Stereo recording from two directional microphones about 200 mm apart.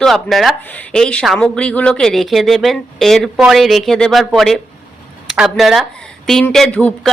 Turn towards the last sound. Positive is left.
turn(degrees=5)  # may be behind; listen again after turning